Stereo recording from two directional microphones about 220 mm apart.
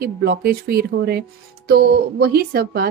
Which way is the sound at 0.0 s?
45° right (ahead or behind).